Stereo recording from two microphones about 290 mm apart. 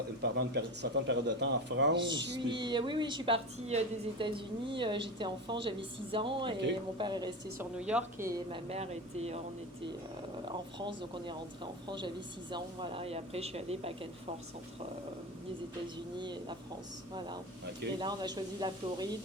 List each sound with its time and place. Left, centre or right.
0.2 s speech: right
2.5 s a woman's voice: centre
7.6 s a woman's voice: centre
8.4 s speech: right
10.8 s a woman's voice: centre
16.1 s a woman's voice: centre
18.0 s a woman's voice: centre